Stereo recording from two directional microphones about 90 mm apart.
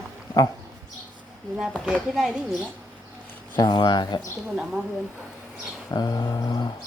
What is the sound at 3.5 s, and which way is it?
Mantra, 55° left (ahead or behind).